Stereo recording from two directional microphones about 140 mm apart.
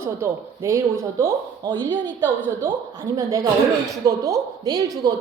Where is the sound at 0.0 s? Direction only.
20° right (ahead or behind).